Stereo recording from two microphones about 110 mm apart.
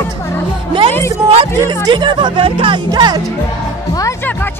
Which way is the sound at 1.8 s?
45° right (ahead or behind).